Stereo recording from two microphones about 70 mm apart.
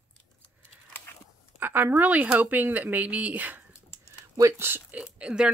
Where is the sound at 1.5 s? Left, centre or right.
Right.